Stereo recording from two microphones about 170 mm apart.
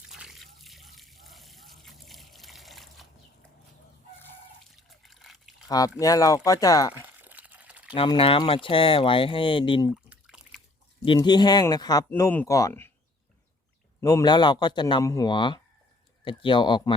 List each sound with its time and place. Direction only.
0.1 s water: centre (ahead or behind)
4.9 s a sound: centre (ahead or behind)
5.6 s speech: 20° left (ahead or behind)
7.2 s a sound: 10° right (ahead or behind)
7.9 s speech: 30° left (ahead or behind)
9.9 s drip: 5° right (ahead or behind)
11.0 s speech: 25° left (ahead or behind)
14.0 s speech: 20° left (ahead or behind)